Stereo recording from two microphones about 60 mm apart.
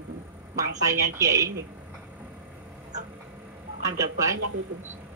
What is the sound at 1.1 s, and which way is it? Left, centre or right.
Speech, right.